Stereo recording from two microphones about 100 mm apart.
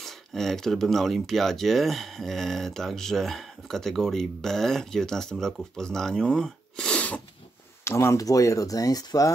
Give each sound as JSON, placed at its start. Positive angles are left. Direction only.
{"t": 0.0, "sound": "speech", "side_deg": 5}
{"t": 7.8, "sound": "speech", "side_deg": 25}